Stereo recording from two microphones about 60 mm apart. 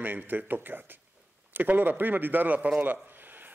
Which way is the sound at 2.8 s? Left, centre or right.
Right.